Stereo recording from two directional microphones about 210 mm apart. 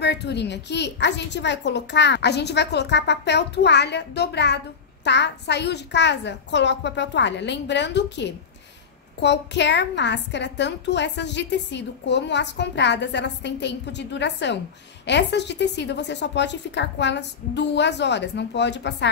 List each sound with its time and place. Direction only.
0.0 s a woman's voice: 55° left (ahead or behind)